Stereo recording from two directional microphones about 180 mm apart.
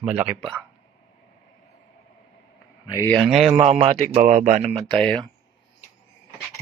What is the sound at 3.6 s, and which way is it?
Speech, 35° right (ahead or behind).